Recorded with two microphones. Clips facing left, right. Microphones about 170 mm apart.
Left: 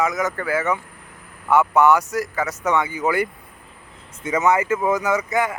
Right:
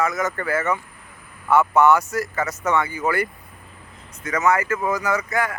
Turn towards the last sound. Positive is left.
turn(degrees=20)  # may be behind; listen again after turning